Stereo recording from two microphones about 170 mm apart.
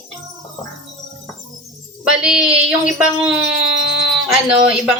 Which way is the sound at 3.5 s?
90° right.